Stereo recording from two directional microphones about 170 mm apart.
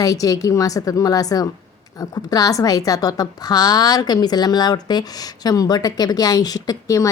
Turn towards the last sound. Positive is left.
turn(degrees=20)  # may be behind; listen again after turning